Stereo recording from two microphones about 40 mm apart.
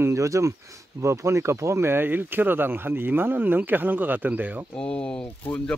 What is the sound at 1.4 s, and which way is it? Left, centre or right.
Speech, right.